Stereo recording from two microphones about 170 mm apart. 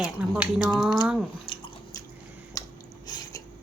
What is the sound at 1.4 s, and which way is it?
Drip, 30° left (ahead or behind).